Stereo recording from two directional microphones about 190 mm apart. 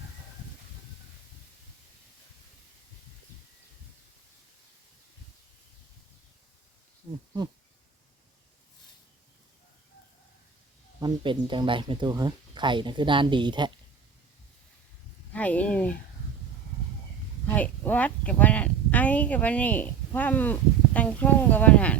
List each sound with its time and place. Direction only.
11.0 s speech: 25° right (ahead or behind)
15.3 s speech: 5° left (ahead or behind)
17.4 s a woman's voice: 10° left (ahead or behind)